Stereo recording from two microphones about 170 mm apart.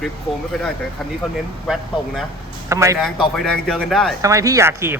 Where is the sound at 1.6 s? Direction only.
Centre (ahead or behind).